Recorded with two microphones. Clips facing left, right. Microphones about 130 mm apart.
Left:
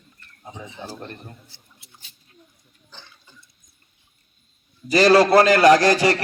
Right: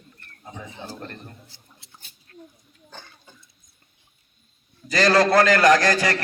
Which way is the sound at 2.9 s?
50° right (ahead or behind).